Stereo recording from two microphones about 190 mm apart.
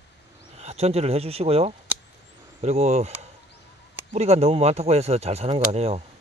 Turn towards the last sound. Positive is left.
turn(degrees=-35)  # may be behind; listen again after turning